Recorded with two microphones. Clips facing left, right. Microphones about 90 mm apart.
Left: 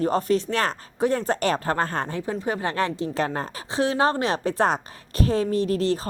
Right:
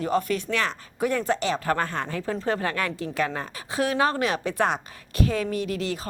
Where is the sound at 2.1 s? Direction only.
15° left (ahead or behind).